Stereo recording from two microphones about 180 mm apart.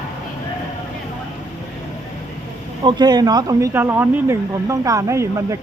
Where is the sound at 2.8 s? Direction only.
25° right (ahead or behind).